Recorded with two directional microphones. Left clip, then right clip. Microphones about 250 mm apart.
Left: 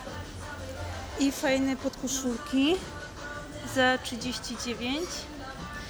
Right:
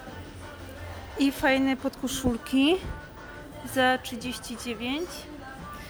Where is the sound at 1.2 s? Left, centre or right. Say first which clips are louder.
Right 3 dB; centre.